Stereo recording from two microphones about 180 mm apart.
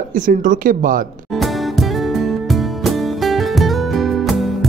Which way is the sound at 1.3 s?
Centre (ahead or behind).